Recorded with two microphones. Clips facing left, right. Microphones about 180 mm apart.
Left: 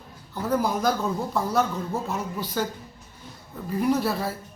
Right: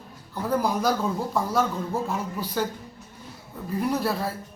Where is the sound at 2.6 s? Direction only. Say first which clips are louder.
Right 1 dB; centre (ahead or behind).